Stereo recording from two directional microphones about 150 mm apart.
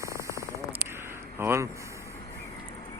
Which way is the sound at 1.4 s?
15° right (ahead or behind).